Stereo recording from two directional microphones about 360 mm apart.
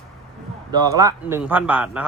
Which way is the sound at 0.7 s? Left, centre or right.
Centre.